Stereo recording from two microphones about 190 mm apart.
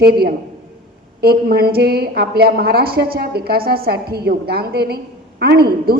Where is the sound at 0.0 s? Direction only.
55° right (ahead or behind).